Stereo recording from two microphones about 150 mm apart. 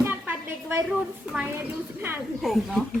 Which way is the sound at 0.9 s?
5° right (ahead or behind).